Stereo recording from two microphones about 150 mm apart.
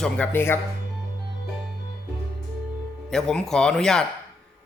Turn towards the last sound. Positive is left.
turn(degrees=5)  # may be behind; listen again after turning